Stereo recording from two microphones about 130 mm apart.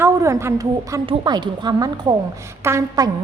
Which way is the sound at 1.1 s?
35° right (ahead or behind).